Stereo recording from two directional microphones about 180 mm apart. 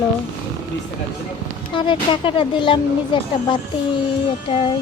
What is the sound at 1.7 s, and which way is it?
Speech, 25° left (ahead or behind).